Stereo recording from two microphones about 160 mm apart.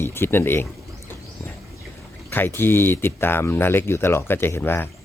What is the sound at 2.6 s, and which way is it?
Speech, 15° left (ahead or behind).